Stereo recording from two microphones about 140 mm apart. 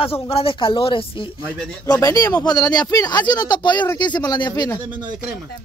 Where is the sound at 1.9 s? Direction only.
25° left (ahead or behind).